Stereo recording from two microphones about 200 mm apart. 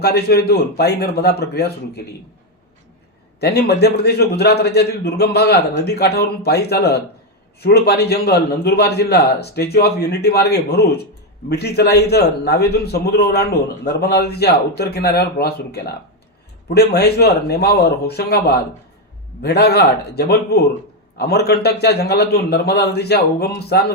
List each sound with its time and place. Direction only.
0.0 s a man's voice: 55° left (ahead or behind)
3.4 s a man's voice: 55° left (ahead or behind)